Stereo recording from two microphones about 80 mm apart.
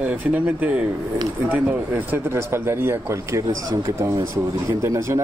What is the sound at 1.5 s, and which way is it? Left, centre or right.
Speech, right.